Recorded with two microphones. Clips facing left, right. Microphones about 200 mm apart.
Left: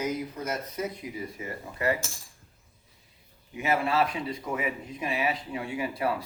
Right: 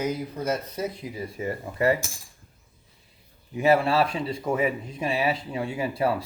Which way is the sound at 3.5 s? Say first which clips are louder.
Right 6 dB; 35° right (ahead or behind).